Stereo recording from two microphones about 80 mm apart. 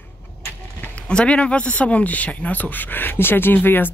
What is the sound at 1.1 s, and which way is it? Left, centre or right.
Speech, centre.